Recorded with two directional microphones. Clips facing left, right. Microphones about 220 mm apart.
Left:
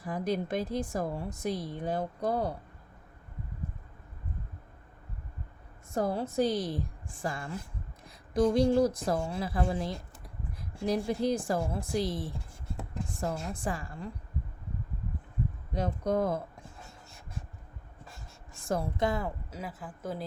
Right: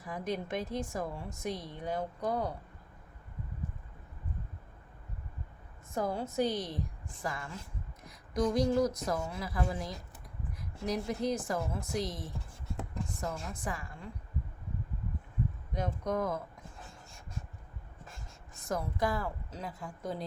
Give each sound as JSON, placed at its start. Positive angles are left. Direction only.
{"t": 0.0, "sound": "a woman's voice", "side_deg": 35}
{"t": 5.9, "sound": "a woman's voice", "side_deg": 35}
{"t": 15.7, "sound": "a woman's voice", "side_deg": 30}
{"t": 18.6, "sound": "speech", "side_deg": 30}
{"t": 19.5, "sound": "speech", "side_deg": 5}